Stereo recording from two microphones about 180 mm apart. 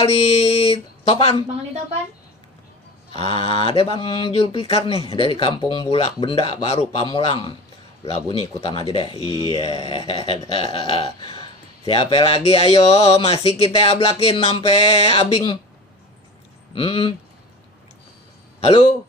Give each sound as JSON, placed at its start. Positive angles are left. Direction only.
{"t": 0.0, "sound": "speech", "side_deg": 35}
{"t": 3.1, "sound": "speech", "side_deg": 30}
{"t": 16.7, "sound": "speech", "side_deg": 30}
{"t": 18.6, "sound": "speech", "side_deg": 35}